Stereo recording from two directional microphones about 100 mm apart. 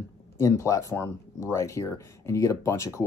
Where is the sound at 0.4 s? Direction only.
35° left (ahead or behind).